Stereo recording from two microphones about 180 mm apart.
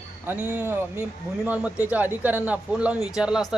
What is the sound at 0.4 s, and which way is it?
A man's voice, 10° right (ahead or behind).